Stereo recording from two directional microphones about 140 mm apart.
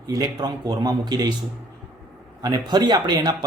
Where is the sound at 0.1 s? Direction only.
25° right (ahead or behind).